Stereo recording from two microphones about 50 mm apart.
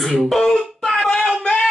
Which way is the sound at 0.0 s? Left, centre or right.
Centre.